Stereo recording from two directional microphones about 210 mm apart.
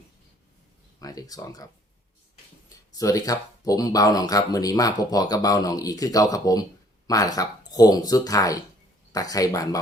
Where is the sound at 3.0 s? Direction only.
15° left (ahead or behind).